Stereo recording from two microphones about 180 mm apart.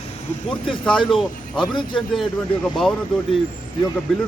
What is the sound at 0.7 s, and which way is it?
Speech, centre (ahead or behind).